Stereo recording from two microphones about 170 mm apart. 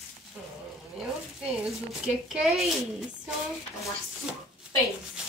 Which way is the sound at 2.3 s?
Centre (ahead or behind).